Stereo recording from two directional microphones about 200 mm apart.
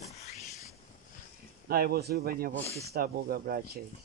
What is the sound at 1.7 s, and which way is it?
Speech, 50° right (ahead or behind).